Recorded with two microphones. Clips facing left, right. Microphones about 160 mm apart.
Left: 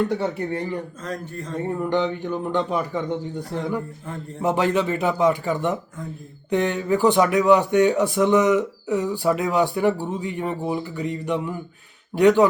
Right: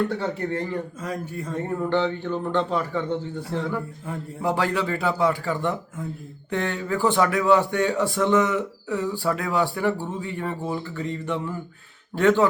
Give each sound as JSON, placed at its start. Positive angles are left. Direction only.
{"t": 0.2, "sound": "a man's voice", "side_deg": 15}
{"t": 1.0, "sound": "speech", "side_deg": -10}
{"t": 1.9, "sound": "a man's voice", "side_deg": 15}